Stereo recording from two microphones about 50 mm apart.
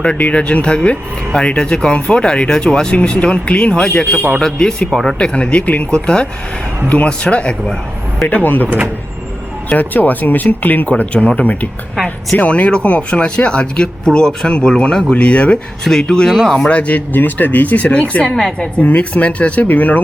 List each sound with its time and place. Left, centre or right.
0.0 s speech: left
4.9 s speech: centre
5.3 s speech: left
8.3 s speech: left
9.7 s speech: left
12.4 s speech: left
15.8 s speech: centre
16.6 s speech: left
18.3 s speech: centre
18.6 s speech: left